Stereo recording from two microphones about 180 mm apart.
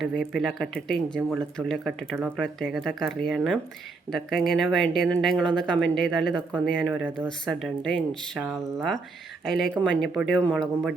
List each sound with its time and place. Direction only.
0.0 s speech: centre (ahead or behind)
2.6 s speech: centre (ahead or behind)